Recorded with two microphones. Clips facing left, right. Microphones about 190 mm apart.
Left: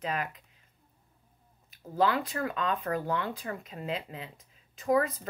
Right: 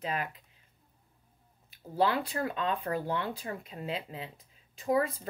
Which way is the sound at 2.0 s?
30° right (ahead or behind).